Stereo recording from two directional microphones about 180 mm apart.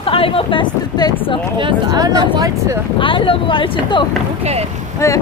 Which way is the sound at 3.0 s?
30° left (ahead or behind).